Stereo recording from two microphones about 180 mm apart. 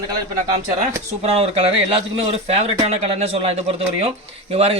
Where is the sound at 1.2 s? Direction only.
35° right (ahead or behind).